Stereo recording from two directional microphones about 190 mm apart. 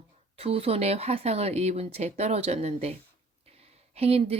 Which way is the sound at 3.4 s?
30° right (ahead or behind).